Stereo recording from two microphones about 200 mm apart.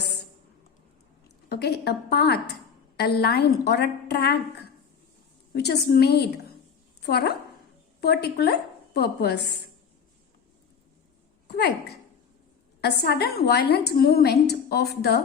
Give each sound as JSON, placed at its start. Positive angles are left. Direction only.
{"t": 1.5, "sound": "a woman's voice", "side_deg": 55}
{"t": 11.4, "sound": "speech", "side_deg": 55}
{"t": 12.8, "sound": "a woman's voice", "side_deg": 55}